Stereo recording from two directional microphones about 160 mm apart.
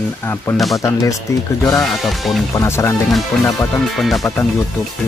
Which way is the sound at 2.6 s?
20° left (ahead or behind).